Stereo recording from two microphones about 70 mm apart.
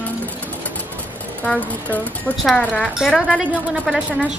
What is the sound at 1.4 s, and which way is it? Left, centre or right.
Speech, centre.